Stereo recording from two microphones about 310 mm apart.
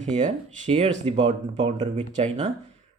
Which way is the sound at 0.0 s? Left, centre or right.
Right.